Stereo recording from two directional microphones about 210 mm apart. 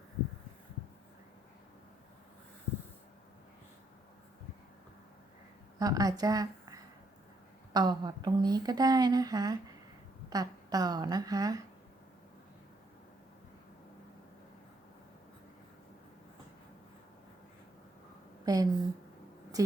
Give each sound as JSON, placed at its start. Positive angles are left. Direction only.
{"t": 5.8, "sound": "a woman's voice", "side_deg": -15}
{"t": 7.7, "sound": "a woman's voice", "side_deg": -20}
{"t": 18.4, "sound": "a woman's voice", "side_deg": -15}